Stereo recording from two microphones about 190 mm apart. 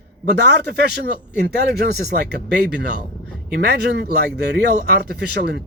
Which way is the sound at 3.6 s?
55° right (ahead or behind).